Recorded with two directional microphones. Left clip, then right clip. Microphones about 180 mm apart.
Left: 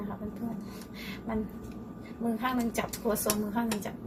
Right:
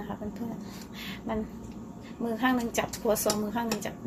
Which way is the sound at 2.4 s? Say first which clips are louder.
Right 5 dB; 60° right (ahead or behind).